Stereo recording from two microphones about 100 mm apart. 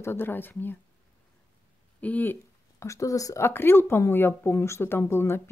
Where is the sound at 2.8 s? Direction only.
30° left (ahead or behind).